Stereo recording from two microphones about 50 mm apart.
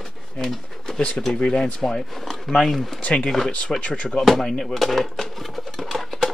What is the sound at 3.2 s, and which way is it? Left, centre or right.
Speech, centre.